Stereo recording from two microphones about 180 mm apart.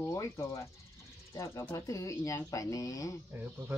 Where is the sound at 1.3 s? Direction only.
15° left (ahead or behind).